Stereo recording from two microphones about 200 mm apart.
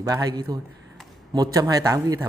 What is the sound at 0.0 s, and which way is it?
A man's voice, 20° right (ahead or behind).